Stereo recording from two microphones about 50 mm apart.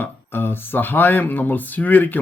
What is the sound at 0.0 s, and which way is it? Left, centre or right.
Speech, left.